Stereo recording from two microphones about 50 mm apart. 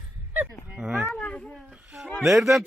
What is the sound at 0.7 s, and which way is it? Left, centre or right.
Speech, right.